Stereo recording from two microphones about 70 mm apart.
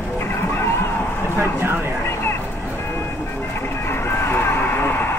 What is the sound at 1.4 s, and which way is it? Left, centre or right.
Speech, right.